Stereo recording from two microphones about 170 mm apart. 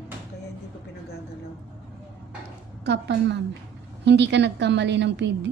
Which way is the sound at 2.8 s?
90° right.